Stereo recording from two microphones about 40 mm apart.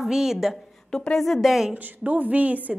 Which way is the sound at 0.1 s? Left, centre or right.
Centre.